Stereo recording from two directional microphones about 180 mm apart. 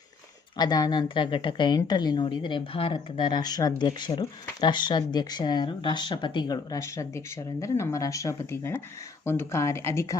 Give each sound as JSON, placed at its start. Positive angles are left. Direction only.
{"t": 0.5, "sound": "a woman's voice", "side_deg": 20}